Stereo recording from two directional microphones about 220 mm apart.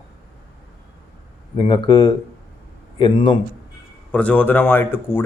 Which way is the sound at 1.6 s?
20° left (ahead or behind).